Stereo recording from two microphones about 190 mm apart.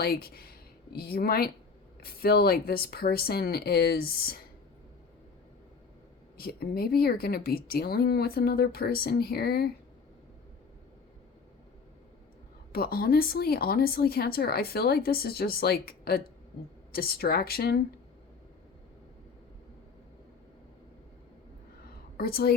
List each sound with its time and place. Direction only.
0.0 s a woman's voice: 55° left (ahead or behind)
6.3 s a woman's voice: 55° left (ahead or behind)
12.7 s a woman's voice: 55° left (ahead or behind)
22.2 s a woman's voice: 50° left (ahead or behind)